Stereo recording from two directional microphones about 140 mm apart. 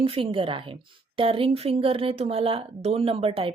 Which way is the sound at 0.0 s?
40° right (ahead or behind).